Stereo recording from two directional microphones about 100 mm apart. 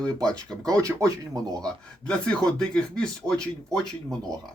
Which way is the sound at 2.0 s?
10° left (ahead or behind).